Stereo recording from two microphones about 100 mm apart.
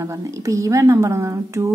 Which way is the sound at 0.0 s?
30° right (ahead or behind).